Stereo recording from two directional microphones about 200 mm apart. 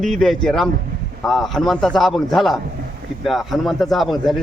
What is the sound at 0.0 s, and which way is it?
Speech, centre (ahead or behind).